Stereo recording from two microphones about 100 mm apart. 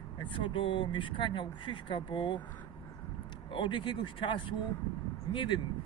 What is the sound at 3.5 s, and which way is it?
Speech, 55° left (ahead or behind).